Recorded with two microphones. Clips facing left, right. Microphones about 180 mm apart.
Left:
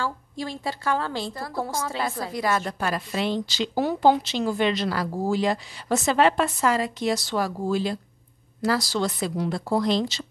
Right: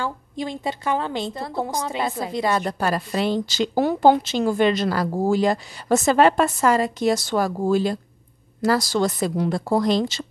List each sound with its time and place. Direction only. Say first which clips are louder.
0.0 s a woman's voice: right 2 dB; 20° right (ahead or behind)
2.8 s a woman's voice: right 4 dB; 40° right (ahead or behind)